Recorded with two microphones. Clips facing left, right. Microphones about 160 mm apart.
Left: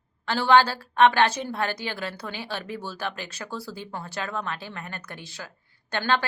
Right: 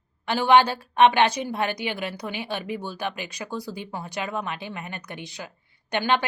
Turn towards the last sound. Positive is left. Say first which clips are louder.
# right 2 dB
turn(degrees=-20)  # may be behind; listen again after turning